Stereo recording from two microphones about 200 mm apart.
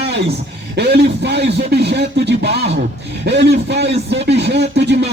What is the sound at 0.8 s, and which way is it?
Speech, 55° right (ahead or behind).